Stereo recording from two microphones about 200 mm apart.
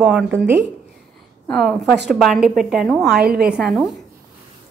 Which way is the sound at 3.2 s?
50° right (ahead or behind).